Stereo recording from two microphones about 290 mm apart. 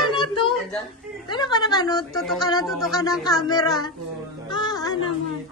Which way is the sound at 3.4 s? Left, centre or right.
Centre.